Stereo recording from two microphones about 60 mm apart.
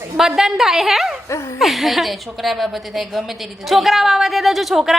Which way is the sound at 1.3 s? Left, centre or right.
Left.